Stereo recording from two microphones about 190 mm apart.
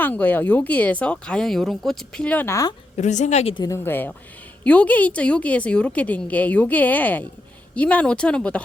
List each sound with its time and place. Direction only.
0.0 s speech: 10° left (ahead or behind)
3.0 s a woman's voice: 40° left (ahead or behind)
3.6 s speech: 15° left (ahead or behind)